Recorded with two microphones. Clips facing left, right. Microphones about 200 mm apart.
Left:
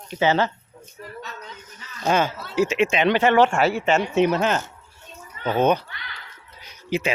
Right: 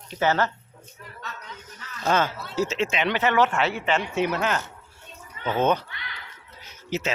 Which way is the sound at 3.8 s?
45° left (ahead or behind).